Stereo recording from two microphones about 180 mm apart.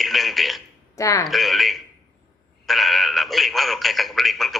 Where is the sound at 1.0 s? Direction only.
20° left (ahead or behind).